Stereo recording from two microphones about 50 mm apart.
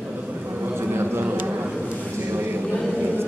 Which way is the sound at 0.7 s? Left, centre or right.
Right.